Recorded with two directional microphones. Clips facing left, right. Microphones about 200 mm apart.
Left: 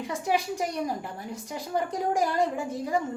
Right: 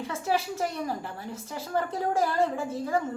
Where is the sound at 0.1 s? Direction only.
15° left (ahead or behind).